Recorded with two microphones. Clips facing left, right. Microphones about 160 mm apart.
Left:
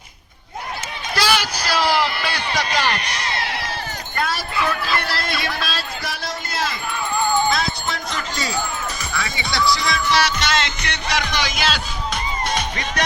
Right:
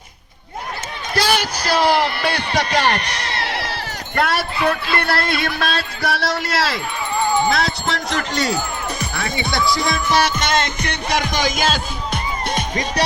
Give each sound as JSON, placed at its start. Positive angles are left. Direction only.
{"t": 1.1, "sound": "a sound", "side_deg": -50}
{"t": 4.1, "sound": "speech", "side_deg": -70}
{"t": 7.5, "sound": "speech", "side_deg": -75}
{"t": 9.0, "sound": "music", "side_deg": -55}
{"t": 12.7, "sound": "music", "side_deg": -35}